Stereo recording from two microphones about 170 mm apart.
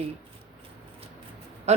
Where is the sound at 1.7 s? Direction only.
40° right (ahead or behind).